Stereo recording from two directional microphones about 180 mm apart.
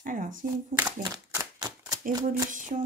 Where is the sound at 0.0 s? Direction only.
45° right (ahead or behind).